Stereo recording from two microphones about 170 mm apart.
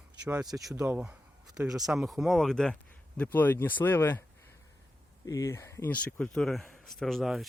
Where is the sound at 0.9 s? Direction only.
10° right (ahead or behind).